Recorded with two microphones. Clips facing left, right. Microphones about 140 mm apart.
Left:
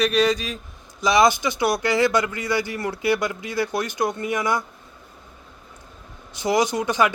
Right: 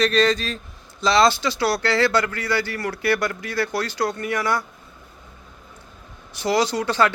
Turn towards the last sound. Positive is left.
turn(degrees=15)  # may be behind; listen again after turning